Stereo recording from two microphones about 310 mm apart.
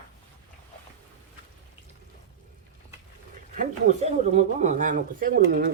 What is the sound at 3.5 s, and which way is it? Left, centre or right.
Speech, right.